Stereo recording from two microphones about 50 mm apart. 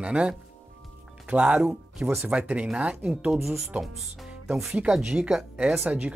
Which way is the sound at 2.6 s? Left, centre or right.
Centre.